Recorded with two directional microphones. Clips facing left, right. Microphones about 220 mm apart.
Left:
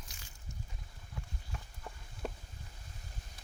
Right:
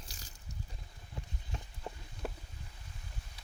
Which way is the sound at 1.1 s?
25° right (ahead or behind).